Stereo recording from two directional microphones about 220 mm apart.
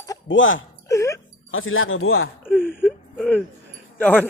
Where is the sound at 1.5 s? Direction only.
65° left (ahead or behind).